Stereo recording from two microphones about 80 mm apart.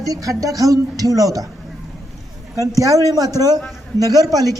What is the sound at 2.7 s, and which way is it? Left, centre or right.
A woman's voice, right.